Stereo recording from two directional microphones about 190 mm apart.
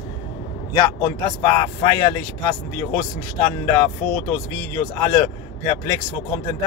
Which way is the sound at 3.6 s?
10° left (ahead or behind).